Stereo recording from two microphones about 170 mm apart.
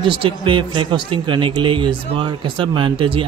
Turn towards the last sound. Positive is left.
turn(degrees=-30)  # may be behind; listen again after turning